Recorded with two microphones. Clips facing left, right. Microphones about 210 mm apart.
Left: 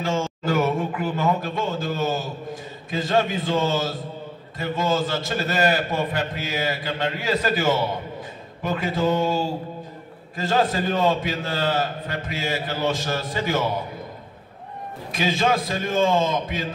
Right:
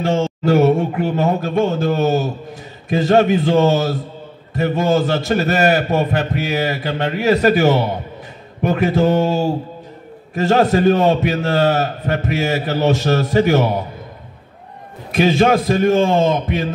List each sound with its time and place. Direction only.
0.0 s a sound: 65° right (ahead or behind)
1.4 s a man's voice: 55° right (ahead or behind)
10.5 s a man's voice: 65° right (ahead or behind)
15.0 s a man's voice: 60° right (ahead or behind)